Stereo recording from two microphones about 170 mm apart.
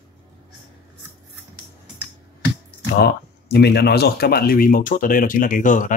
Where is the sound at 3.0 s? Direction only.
70° left (ahead or behind); by 5.9 s 50° left (ahead or behind).